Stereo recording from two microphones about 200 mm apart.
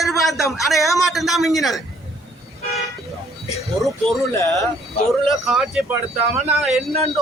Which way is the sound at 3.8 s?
Centre (ahead or behind).